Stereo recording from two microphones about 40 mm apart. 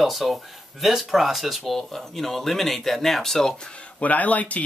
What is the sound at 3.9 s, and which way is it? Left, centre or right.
Speech, left.